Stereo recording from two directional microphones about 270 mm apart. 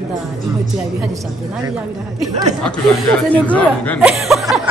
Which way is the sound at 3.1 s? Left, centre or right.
Centre.